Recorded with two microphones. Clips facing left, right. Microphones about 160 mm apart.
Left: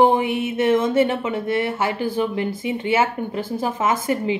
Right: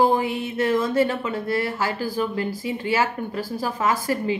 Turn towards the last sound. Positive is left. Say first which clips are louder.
# left 2 dB
turn(degrees=20)  # may be behind; listen again after turning